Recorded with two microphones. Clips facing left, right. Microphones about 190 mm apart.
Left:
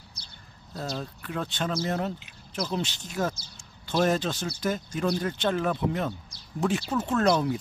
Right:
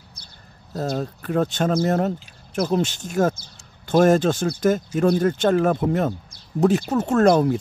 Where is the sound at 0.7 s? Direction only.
45° right (ahead or behind).